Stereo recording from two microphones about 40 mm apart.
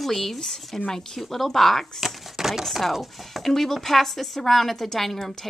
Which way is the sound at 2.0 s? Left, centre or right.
Centre.